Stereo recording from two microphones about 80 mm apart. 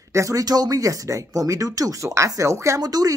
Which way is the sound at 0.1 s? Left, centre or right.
Right.